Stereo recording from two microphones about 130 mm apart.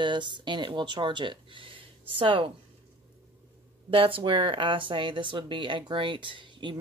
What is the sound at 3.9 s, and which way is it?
Speech, 45° right (ahead or behind).